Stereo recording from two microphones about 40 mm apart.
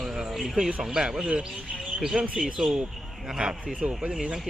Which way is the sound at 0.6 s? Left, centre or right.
Right.